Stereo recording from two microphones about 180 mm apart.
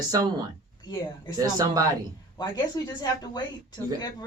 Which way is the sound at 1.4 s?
20° right (ahead or behind).